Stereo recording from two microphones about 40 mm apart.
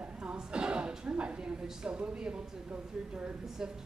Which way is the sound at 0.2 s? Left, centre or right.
Right.